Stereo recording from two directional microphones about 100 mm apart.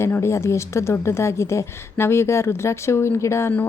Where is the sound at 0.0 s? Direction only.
25° left (ahead or behind).